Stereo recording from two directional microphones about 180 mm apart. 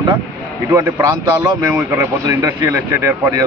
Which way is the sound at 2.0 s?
20° right (ahead or behind).